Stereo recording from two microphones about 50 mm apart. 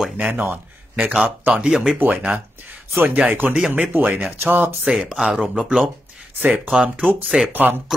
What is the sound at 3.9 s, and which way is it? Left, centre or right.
Speech, right.